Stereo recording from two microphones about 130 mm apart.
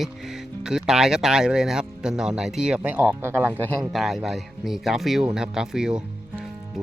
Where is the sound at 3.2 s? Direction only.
20° right (ahead or behind).